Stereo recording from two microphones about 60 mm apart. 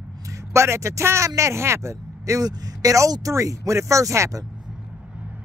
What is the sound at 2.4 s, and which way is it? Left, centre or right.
Speech, right.